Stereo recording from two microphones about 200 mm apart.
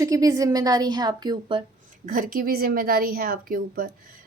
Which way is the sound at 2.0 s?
45° right (ahead or behind).